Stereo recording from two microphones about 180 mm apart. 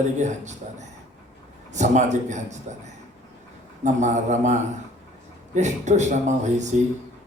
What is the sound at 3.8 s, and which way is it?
A man's voice, 40° right (ahead or behind).